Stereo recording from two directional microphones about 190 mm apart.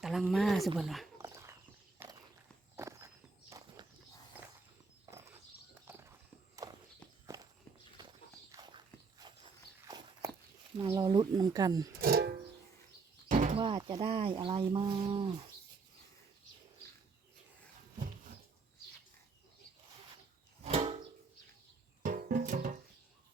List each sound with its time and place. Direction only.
0.0 s speech: centre (ahead or behind)
1.2 s dog: 15° right (ahead or behind)
2.0 s walk: 10° right (ahead or behind)
5.1 s horse: 15° right (ahead or behind)
6.6 s walk: 15° right (ahead or behind)
8.5 s walk: 20° right (ahead or behind)
10.8 s speech: 25° right (ahead or behind)
11.9 s music: 50° right (ahead or behind)
13.2 s bird flight: 40° right (ahead or behind)
13.6 s speech: 25° right (ahead or behind)
20.7 s music: 30° right (ahead or behind)
22.0 s music: 45° right (ahead or behind)